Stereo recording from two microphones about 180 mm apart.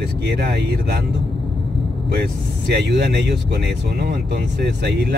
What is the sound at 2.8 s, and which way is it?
Speech, 65° right (ahead or behind).